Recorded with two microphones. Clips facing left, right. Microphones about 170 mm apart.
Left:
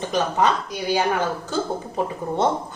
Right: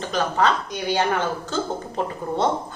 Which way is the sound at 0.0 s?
15° left (ahead or behind).